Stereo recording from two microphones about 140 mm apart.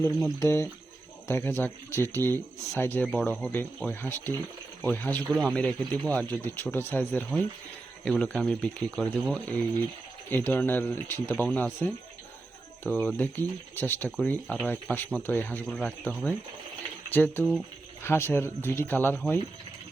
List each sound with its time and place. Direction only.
0.3 s speech: 20° left (ahead or behind)
3.1 s speech: 5° left (ahead or behind)
10.2 s speech: 15° left (ahead or behind)